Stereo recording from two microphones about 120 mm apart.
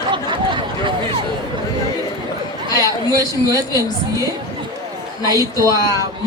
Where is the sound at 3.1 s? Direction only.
25° right (ahead or behind).